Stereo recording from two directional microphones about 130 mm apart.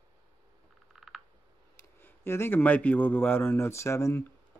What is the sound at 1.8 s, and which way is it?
Speech, 15° left (ahead or behind).